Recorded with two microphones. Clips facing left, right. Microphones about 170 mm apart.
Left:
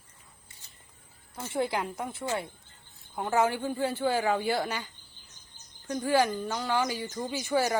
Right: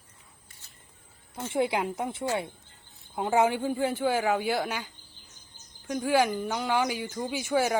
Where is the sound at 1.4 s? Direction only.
15° right (ahead or behind).